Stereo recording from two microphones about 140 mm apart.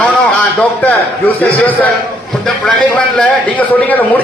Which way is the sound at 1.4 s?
10° left (ahead or behind).